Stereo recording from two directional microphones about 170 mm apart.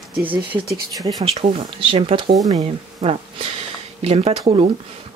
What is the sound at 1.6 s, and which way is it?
Speech, 30° right (ahead or behind).